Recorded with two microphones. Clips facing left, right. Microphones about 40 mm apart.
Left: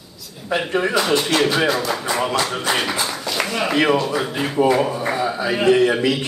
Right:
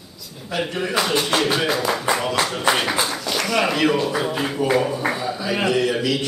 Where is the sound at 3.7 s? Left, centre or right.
Left.